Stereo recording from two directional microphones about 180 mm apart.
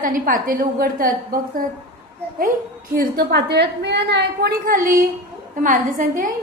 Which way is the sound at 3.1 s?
70° right (ahead or behind).